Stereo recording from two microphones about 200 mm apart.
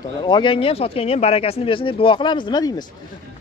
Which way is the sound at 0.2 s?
25° left (ahead or behind).